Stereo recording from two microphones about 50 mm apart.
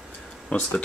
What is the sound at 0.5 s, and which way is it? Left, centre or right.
Speech, left.